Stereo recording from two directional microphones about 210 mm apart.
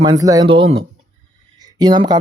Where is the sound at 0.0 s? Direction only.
20° right (ahead or behind).